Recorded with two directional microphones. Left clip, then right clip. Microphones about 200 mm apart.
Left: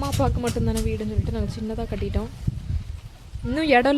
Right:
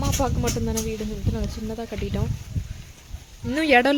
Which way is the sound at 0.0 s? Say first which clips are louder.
Even; centre (ahead or behind).